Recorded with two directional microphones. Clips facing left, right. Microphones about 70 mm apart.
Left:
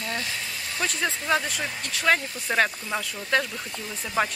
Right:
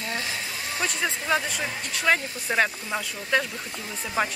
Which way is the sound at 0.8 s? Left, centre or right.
Centre.